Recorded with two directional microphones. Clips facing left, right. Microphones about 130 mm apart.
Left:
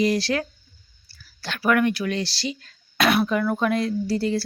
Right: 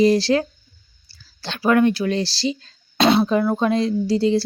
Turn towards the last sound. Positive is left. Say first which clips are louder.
# right 5 dB
turn(degrees=-20)  # may be behind; listen again after turning